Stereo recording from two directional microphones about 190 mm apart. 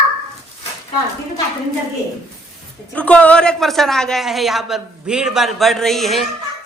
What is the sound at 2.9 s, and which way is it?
A woman's voice, 5° left (ahead or behind).